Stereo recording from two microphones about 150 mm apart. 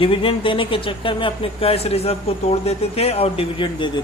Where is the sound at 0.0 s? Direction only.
35° left (ahead or behind).